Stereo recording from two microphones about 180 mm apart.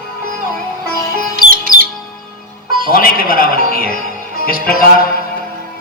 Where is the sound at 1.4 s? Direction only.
50° right (ahead or behind).